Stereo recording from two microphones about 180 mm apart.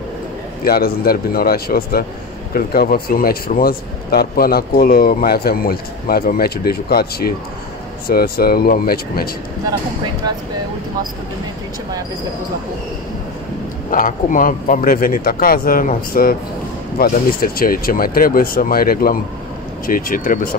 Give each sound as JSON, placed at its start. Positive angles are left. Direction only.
{"t": 0.7, "sound": "speech", "side_deg": 60}
{"t": 10.2, "sound": "speech", "side_deg": -25}
{"t": 13.8, "sound": "a man's voice", "side_deg": 45}